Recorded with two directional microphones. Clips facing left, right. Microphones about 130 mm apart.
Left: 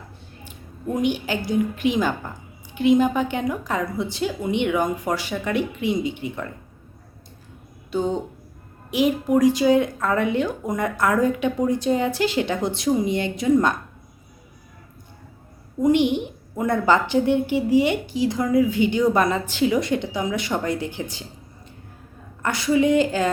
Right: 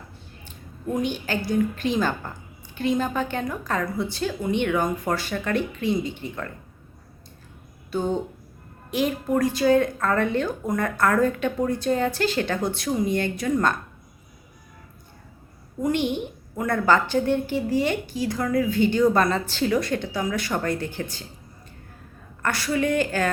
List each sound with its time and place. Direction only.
0.4 s a woman's voice: 15° left (ahead or behind)
7.9 s a woman's voice: 15° left (ahead or behind)
15.8 s a woman's voice: 15° left (ahead or behind)
22.4 s a woman's voice: 20° left (ahead or behind)